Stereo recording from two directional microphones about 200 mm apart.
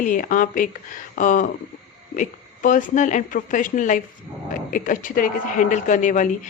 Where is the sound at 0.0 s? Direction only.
40° left (ahead or behind).